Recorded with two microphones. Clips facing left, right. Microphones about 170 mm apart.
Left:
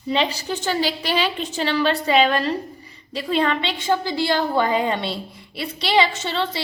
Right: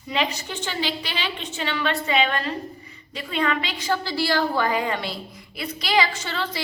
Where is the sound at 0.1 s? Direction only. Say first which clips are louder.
Left 4 dB; 30° left (ahead or behind).